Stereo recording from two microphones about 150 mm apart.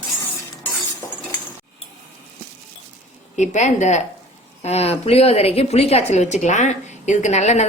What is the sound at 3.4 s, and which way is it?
A woman's voice, 55° left (ahead or behind).